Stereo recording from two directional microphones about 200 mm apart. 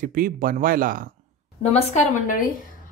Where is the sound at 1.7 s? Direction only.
40° left (ahead or behind).